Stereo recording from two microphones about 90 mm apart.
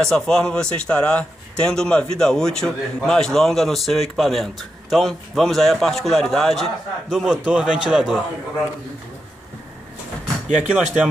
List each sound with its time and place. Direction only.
0.0 s a man's voice: 5° left (ahead or behind)
10.5 s speech: 5° right (ahead or behind)